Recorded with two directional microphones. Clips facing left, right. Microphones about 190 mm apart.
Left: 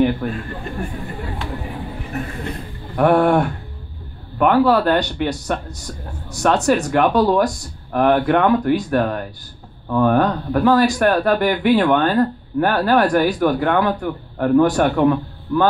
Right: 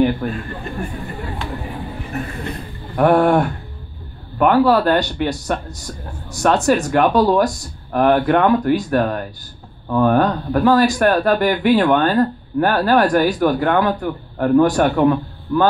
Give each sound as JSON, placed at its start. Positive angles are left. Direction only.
{"t": 0.2, "sound": "speech", "side_deg": -40}
{"t": 3.0, "sound": "speech", "side_deg": -40}